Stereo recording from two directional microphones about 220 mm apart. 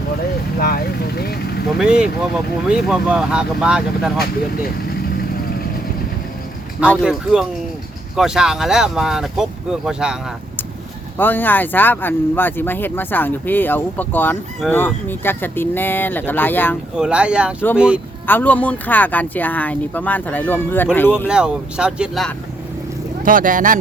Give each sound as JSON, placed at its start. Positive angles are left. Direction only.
{"t": 0.6, "sound": "vehicle", "side_deg": 45}
{"t": 1.8, "sound": "speech", "side_deg": -5}
{"t": 7.0, "sound": "speech", "side_deg": 0}
{"t": 11.2, "sound": "speech", "side_deg": 10}
{"t": 16.9, "sound": "speech", "side_deg": -5}
{"t": 18.3, "sound": "speech", "side_deg": 10}
{"t": 21.2, "sound": "speech", "side_deg": -5}
{"t": 23.2, "sound": "speech", "side_deg": -40}